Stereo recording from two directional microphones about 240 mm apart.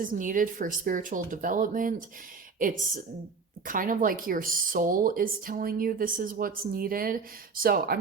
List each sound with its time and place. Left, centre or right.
0.0 s speech: right